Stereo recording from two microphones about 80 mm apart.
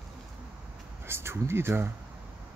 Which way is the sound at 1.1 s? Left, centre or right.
Right.